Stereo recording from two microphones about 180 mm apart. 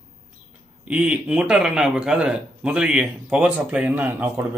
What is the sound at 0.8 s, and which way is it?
Speech, 5° right (ahead or behind).